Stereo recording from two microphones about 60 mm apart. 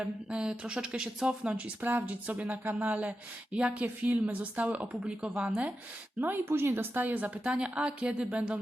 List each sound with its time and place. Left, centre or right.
0.0 s speech: centre
6.1 s speech: right; by 8.5 s centre